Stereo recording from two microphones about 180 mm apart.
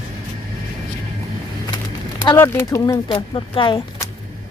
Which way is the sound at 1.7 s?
25° left (ahead or behind).